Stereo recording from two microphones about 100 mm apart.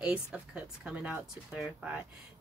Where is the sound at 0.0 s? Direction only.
10° right (ahead or behind).